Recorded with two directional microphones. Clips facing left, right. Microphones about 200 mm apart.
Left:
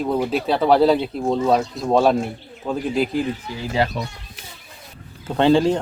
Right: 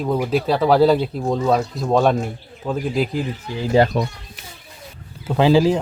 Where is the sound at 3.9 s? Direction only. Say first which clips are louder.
Right 6 dB; 60° right (ahead or behind).